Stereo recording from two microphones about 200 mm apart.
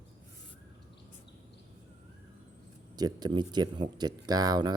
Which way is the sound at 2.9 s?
20° right (ahead or behind).